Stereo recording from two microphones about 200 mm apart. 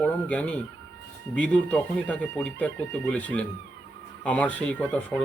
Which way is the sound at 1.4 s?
5° left (ahead or behind).